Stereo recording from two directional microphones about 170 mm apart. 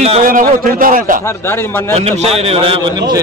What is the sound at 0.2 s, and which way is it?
A man's voice, 55° right (ahead or behind).